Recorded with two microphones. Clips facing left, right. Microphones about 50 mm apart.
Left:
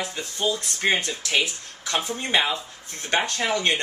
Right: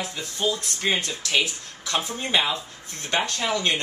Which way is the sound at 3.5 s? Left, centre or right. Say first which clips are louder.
Left 1 dB; centre.